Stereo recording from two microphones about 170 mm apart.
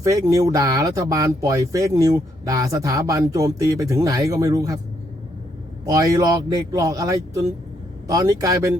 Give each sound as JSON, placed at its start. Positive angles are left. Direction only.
{"t": 0.0, "sound": "speech", "side_deg": -20}
{"t": 5.8, "sound": "speech", "side_deg": -20}